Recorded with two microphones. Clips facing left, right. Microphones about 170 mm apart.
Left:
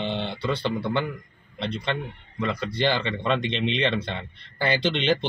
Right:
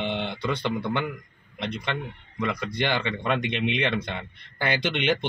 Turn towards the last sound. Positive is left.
turn(degrees=-15)  # may be behind; listen again after turning